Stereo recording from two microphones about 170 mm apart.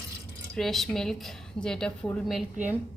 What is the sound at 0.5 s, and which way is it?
A woman's voice, centre (ahead or behind).